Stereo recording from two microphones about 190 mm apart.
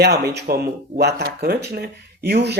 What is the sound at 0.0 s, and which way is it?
Speech, 60° right (ahead or behind).